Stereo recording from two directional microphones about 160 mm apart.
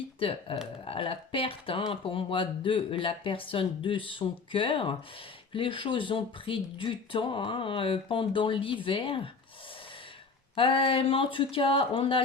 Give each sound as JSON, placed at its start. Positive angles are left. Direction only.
{"t": 0.2, "sound": "speech", "side_deg": 35}
{"t": 10.5, "sound": "speech", "side_deg": 35}